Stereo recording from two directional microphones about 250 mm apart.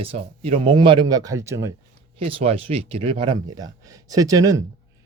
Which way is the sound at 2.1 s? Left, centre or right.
Right.